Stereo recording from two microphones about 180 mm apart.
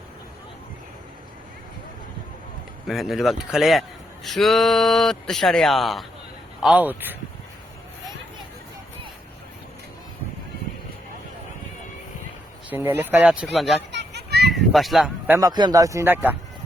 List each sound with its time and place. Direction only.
2.8 s a man's voice: centre (ahead or behind)
12.7 s speech: 10° right (ahead or behind)
13.9 s children playing: 70° right (ahead or behind)
14.5 s speech: centre (ahead or behind)
15.4 s speech: 20° right (ahead or behind)